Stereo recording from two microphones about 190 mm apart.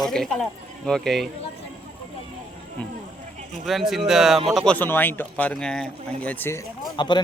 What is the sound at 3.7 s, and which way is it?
Speech, centre (ahead or behind).